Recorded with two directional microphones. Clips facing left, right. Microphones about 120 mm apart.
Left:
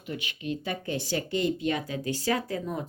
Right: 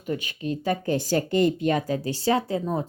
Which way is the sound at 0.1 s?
40° right (ahead or behind).